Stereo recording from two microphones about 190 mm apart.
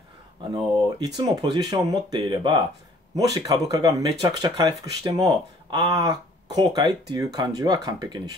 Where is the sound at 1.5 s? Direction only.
20° right (ahead or behind).